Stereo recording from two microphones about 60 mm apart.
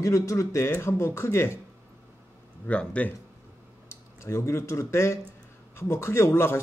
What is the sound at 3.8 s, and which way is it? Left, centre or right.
Speech, left.